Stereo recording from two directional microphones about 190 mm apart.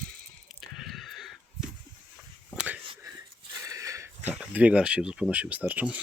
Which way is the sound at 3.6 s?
15° right (ahead or behind).